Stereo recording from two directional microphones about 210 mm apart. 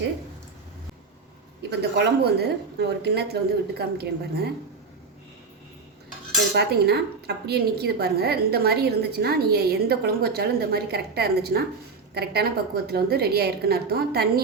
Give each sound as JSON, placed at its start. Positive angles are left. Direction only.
{"t": 1.7, "sound": "a woman's voice", "side_deg": -50}
{"t": 6.5, "sound": "a woman's voice", "side_deg": -50}